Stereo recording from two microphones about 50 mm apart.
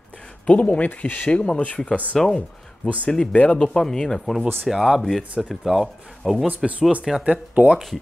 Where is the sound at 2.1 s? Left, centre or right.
Centre.